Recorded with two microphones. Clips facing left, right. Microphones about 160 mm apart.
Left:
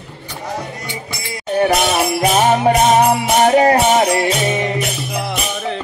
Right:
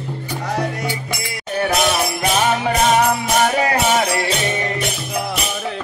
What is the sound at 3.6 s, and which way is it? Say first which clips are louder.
Music: left 5 dB; 30° left (ahead or behind).